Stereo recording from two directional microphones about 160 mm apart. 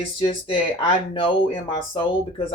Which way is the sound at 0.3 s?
30° left (ahead or behind).